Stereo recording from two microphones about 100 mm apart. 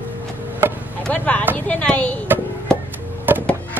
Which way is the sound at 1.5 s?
15° left (ahead or behind).